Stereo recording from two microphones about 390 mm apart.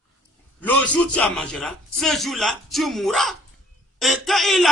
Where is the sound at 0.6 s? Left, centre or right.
Centre.